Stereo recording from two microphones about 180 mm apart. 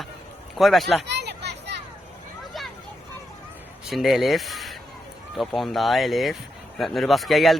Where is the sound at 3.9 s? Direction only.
Centre (ahead or behind).